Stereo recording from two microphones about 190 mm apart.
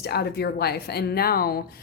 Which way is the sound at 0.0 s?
60° left (ahead or behind).